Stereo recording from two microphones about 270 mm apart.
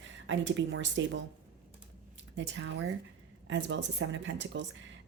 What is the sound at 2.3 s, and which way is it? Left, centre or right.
A woman's voice, right.